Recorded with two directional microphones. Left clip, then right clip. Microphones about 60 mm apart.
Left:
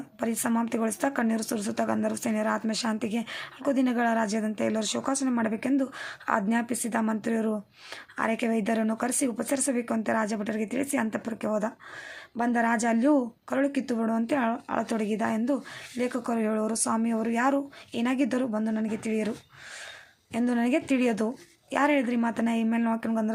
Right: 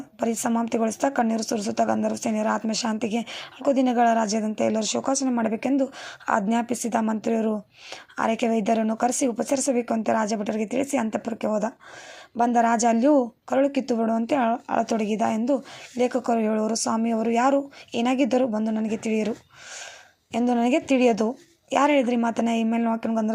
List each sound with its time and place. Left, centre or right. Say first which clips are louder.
0.2 s speech: right 4 dB; right
8.1 s speech: right 4 dB; right
14.3 s a woman's voice: right 5 dB; right
20.3 s a woman's voice: right 5 dB; right